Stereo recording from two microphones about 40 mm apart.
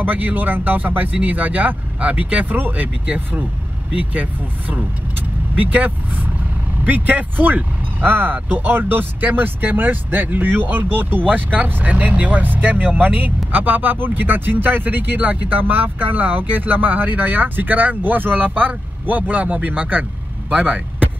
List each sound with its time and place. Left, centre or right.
0.0 s speech: right